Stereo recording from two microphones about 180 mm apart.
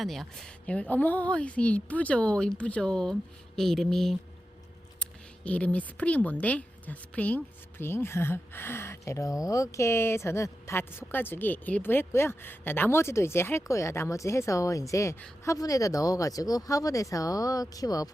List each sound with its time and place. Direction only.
0.0 s a woman's voice: centre (ahead or behind)
5.5 s a woman's voice: 5° left (ahead or behind)